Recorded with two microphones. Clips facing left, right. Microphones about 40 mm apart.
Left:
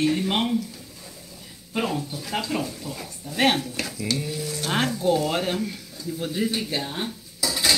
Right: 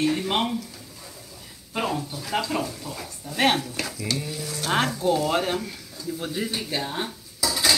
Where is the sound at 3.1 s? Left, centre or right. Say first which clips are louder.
Even; right.